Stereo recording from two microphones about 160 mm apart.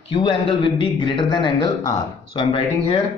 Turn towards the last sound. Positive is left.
turn(degrees=35)  # may be behind; listen again after turning